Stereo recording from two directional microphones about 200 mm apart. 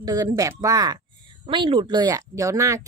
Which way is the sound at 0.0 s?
20° right (ahead or behind).